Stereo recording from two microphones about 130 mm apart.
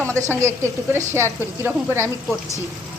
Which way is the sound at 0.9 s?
20° right (ahead or behind).